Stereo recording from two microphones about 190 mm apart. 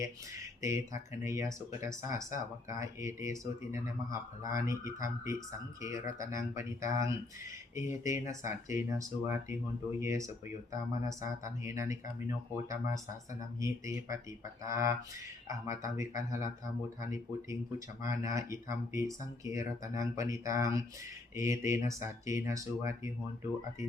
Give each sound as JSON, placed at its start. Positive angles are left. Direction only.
{"t": 0.6, "sound": "speech", "side_deg": -15}